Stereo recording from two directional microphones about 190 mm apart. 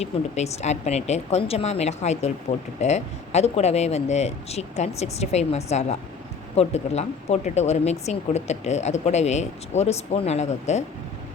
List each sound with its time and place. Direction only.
0.0 s speech: 35° left (ahead or behind)